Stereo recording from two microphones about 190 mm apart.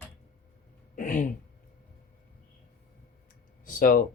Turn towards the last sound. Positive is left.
turn(degrees=50)  # may be behind; listen again after turning